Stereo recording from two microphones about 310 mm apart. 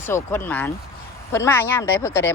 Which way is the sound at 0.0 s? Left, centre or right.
Centre.